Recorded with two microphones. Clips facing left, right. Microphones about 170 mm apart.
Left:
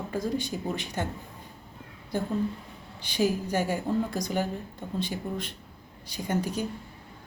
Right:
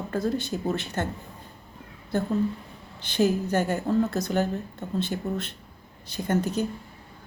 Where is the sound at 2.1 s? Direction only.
10° left (ahead or behind).